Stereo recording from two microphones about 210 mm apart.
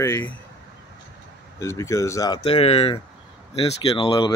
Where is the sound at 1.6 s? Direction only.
15° left (ahead or behind).